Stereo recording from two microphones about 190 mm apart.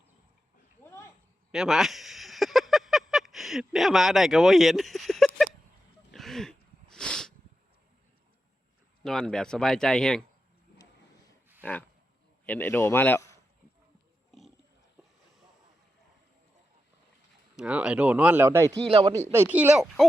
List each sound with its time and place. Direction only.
1.5 s a sound: centre (ahead or behind)
9.0 s speech: 5° left (ahead or behind)
11.6 s a man's voice: 10° left (ahead or behind)
17.6 s speech: 5° right (ahead or behind)
18.9 s speech: 30° right (ahead or behind)
19.3 s speech: 10° right (ahead or behind)